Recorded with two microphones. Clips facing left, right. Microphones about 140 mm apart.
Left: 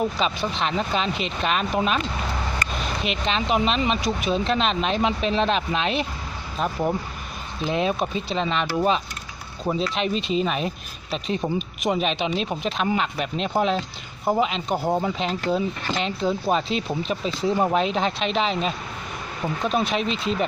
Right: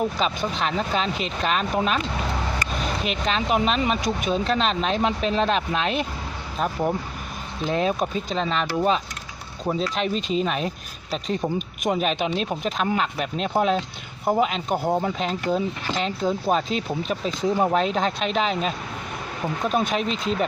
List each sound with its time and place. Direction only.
0.0 s speech: centre (ahead or behind)
3.2 s speech: centre (ahead or behind)
10.2 s speech: 40° right (ahead or behind)
10.4 s speech: centre (ahead or behind)
19.7 s speech: 5° left (ahead or behind)
20.1 s speech: 45° right (ahead or behind)